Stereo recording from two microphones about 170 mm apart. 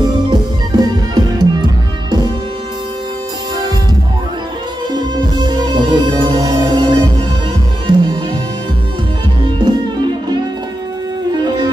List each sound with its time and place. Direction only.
0.3 s music: 25° right (ahead or behind)
4.9 s music: 25° right (ahead or behind)
11.4 s music: 25° right (ahead or behind)